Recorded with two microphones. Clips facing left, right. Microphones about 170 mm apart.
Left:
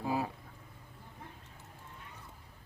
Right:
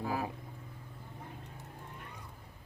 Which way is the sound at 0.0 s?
20° left (ahead or behind).